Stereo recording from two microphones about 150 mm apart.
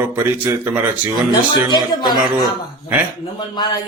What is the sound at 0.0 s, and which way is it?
Speech, 15° right (ahead or behind).